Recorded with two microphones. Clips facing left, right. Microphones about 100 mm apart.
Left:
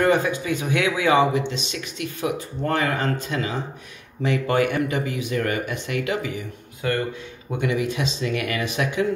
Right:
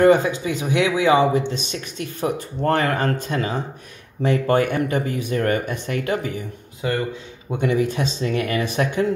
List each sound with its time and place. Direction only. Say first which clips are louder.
0.0 s speech: right 5 dB; 25° right (ahead or behind)
1.5 s speech: right 2 dB; 40° right (ahead or behind)
2.7 s speech: right 3 dB; 55° right (ahead or behind)
6.8 s speech: right 1 dB; 15° right (ahead or behind)
7.6 s speech: right 3 dB; 35° right (ahead or behind)